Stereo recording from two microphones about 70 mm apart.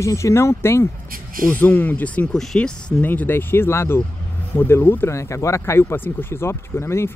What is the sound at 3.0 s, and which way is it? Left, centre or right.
Speech, left.